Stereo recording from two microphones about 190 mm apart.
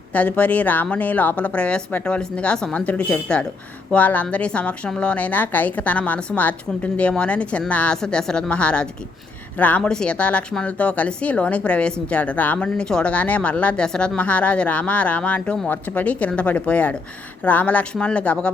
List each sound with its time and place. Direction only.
0.1 s speech: 10° left (ahead or behind)